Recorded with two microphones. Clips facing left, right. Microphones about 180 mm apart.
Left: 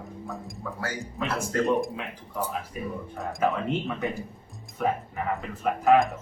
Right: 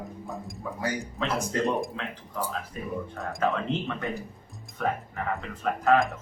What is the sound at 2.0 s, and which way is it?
Speech, 10° left (ahead or behind).